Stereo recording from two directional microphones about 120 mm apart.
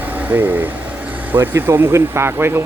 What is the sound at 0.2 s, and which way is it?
Speech, 15° right (ahead or behind).